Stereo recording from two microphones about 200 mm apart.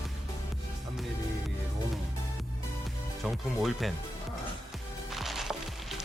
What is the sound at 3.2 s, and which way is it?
Speech, centre (ahead or behind).